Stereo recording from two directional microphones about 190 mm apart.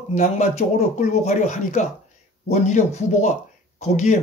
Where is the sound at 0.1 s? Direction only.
35° left (ahead or behind).